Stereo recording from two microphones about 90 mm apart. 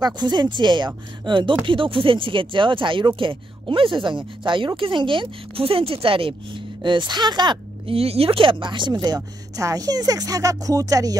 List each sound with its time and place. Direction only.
0.0 s speech: 55° right (ahead or behind)
7.8 s speech: 90° right; by 11.1 s 40° right (ahead or behind)